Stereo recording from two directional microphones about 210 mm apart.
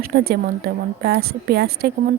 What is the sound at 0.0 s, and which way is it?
A woman's voice, 45° right (ahead or behind).